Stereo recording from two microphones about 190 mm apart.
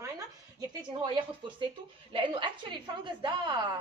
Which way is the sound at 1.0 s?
25° right (ahead or behind).